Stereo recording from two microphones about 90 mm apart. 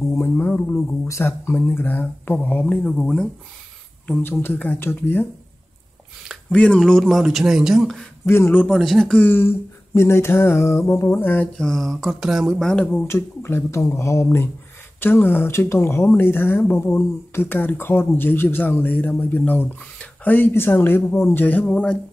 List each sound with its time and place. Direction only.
0.1 s speech: 20° left (ahead or behind)
1.0 s speech: 30° left (ahead or behind); by 3.3 s 10° left (ahead or behind)
4.1 s speech: 25° left (ahead or behind)
6.5 s speech: 15° left (ahead or behind)
9.2 s speech: 25° left (ahead or behind)
11.5 s speech: 5° left (ahead or behind)
12.6 s speech: 15° left (ahead or behind)
13.0 s speech: 25° left (ahead or behind); by 21.9 s 10° left (ahead or behind)